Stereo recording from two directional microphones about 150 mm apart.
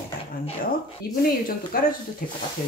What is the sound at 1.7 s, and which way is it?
Speech, 75° left (ahead or behind).